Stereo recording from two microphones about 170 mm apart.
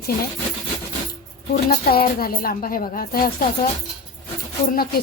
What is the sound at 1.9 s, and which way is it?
A woman's voice, 60° left (ahead or behind).